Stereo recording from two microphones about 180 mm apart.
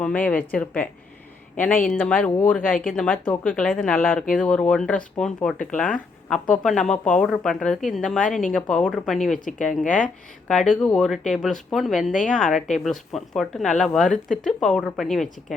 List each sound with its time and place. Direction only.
0.0 s speech: 5° left (ahead or behind)
9.8 s speech: 45° left (ahead or behind)
10.5 s speech: 5° left (ahead or behind)